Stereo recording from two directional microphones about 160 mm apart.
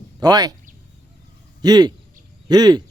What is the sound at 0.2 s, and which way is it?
Speech, 25° right (ahead or behind).